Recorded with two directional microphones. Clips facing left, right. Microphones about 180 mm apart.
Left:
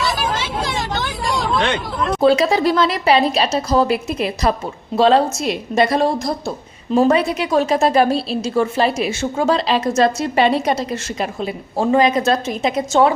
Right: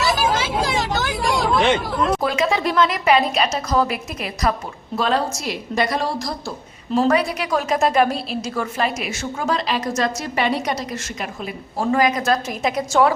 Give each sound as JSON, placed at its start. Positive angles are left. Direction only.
{"t": 0.2, "sound": "hubbub", "side_deg": -5}
{"t": 2.2, "sound": "a woman's voice", "side_deg": 35}